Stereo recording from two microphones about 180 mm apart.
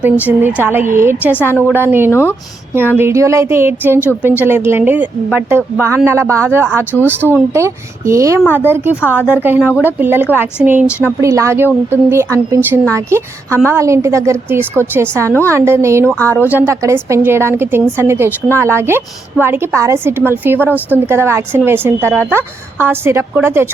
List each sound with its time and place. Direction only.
0.0 s speech: 10° right (ahead or behind)
1.4 s speech: 10° left (ahead or behind)
1.6 s speech: 10° right (ahead or behind)
2.0 s speech: 15° left (ahead or behind)
3.0 s speech: 15° right (ahead or behind)
16.0 s speech: 5° left (ahead or behind)
16.4 s speech: 10° right (ahead or behind)